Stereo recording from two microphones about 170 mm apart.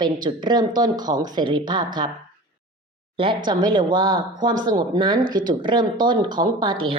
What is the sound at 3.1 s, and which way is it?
Speech, 30° right (ahead or behind).